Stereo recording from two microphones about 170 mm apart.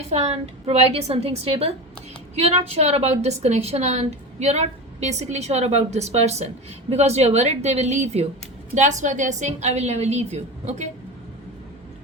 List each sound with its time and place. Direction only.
0.1 s a woman's voice: 40° right (ahead or behind)